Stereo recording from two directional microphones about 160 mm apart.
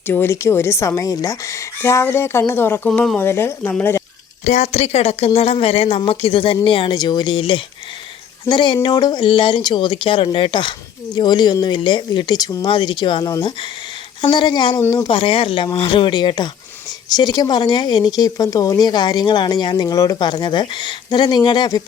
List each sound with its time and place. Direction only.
0.1 s speech: 15° left (ahead or behind)
4.4 s speech: 45° left (ahead or behind); by 14.8 s 30° left (ahead or behind)
14.8 s speech: 15° left (ahead or behind)
15.0 s speech: 35° left (ahead or behind)